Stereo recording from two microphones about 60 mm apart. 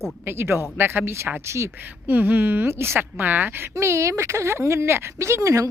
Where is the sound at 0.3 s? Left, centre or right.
Right.